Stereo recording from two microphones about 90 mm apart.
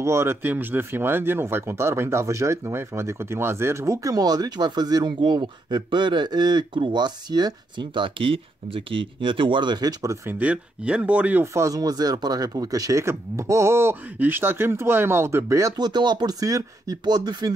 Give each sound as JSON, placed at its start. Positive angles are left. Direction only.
{"t": 0.0, "sound": "speech", "side_deg": -30}
{"t": 10.4, "sound": "speech", "side_deg": -15}
{"t": 11.5, "sound": "speech", "side_deg": -40}
{"t": 15.8, "sound": "speech", "side_deg": -55}